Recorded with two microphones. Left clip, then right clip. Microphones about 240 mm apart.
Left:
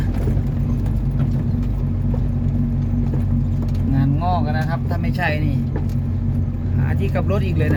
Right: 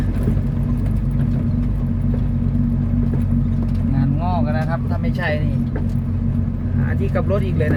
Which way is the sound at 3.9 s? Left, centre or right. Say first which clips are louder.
Left 2 dB; left.